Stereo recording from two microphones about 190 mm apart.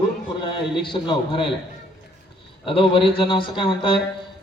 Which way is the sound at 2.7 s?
30° left (ahead or behind).